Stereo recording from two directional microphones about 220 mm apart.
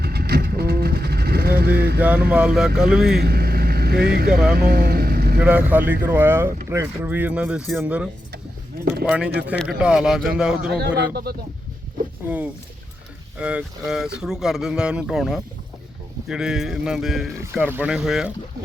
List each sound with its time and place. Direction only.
0.0 s vehicle: 45° right (ahead or behind)
2.0 s speech: 5° right (ahead or behind)
3.2 s vehicle: 45° right (ahead or behind)
4.3 s speech: 5° right (ahead or behind)
4.5 s vehicle: 45° right (ahead or behind)
5.4 s speech: 5° right (ahead or behind)
10.7 s speech: 50° right (ahead or behind)
13.4 s speech: 5° right (ahead or behind)